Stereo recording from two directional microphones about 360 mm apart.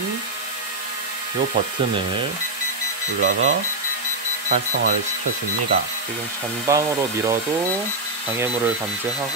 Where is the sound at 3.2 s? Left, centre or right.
Right.